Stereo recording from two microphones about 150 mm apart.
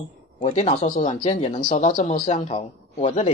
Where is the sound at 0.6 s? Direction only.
55° left (ahead or behind).